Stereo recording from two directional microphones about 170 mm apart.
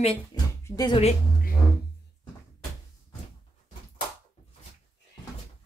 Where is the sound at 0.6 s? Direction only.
25° left (ahead or behind).